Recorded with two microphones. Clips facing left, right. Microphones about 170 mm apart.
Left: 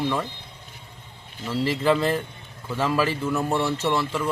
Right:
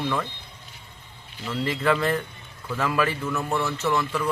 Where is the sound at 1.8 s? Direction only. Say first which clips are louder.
Left 1 dB; 25° left (ahead or behind).